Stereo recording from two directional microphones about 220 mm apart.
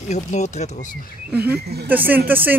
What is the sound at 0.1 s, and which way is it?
Speech, 30° left (ahead or behind).